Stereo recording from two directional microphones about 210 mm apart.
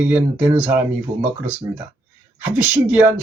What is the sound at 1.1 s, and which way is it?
Speech, 35° right (ahead or behind).